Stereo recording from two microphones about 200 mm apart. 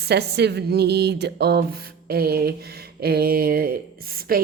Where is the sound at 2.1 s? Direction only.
50° right (ahead or behind).